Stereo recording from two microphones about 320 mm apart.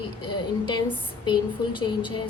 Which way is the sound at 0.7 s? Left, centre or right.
Centre.